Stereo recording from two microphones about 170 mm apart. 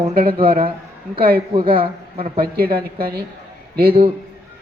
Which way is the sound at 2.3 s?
60° right (ahead or behind).